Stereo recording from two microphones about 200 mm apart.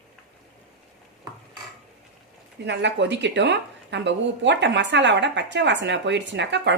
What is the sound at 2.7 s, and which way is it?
Speech, 60° right (ahead or behind).